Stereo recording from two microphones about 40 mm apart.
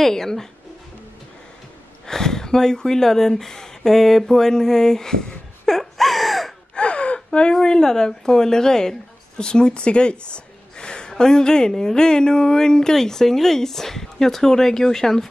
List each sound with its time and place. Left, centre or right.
0.0 s a woman's voice: centre
2.0 s speech: centre
5.8 s gasp: centre
6.7 s gasp: left
7.5 s a woman's voice: centre